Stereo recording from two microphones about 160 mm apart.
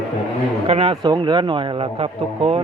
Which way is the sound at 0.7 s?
35° right (ahead or behind).